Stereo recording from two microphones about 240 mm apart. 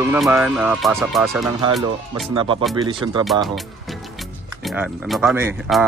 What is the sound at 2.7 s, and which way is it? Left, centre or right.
Speech, centre.